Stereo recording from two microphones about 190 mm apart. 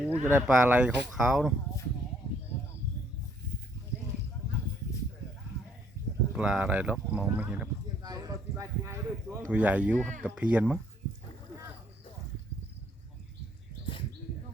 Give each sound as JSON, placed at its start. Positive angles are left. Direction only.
{"t": 0.0, "sound": "speech", "side_deg": -10}
{"t": 6.3, "sound": "speech", "side_deg": -5}
{"t": 8.0, "sound": "speech", "side_deg": -20}